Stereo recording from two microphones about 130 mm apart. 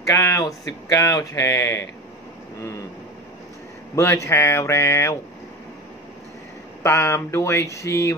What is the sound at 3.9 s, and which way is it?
Speech, 20° left (ahead or behind).